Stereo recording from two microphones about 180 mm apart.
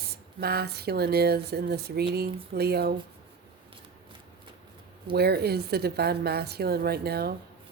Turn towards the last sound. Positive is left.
turn(degrees=-60)  # may be behind; listen again after turning